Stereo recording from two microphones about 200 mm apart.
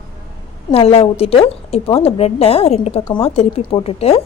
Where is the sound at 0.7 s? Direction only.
30° left (ahead or behind).